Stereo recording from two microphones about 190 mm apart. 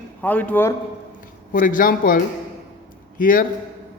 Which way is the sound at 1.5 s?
45° left (ahead or behind).